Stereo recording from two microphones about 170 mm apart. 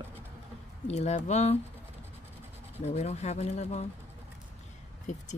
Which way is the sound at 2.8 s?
40° left (ahead or behind).